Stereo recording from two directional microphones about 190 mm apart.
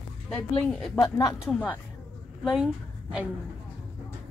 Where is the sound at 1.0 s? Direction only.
20° left (ahead or behind).